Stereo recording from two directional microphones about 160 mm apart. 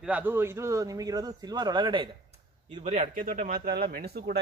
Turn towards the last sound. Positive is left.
turn(degrees=-75)  # may be behind; listen again after turning